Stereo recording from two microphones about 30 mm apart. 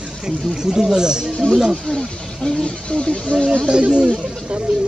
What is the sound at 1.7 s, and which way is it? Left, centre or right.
Speech, centre.